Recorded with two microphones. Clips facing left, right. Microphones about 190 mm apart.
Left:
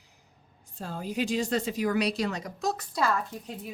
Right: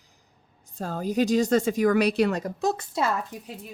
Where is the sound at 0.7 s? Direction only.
45° right (ahead or behind).